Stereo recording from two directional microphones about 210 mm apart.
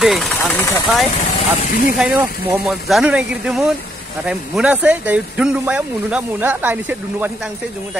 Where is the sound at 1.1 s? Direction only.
35° left (ahead or behind).